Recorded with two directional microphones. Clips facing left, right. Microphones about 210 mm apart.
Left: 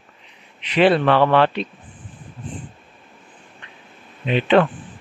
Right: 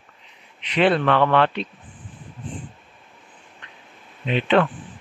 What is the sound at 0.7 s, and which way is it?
Speech, 10° left (ahead or behind).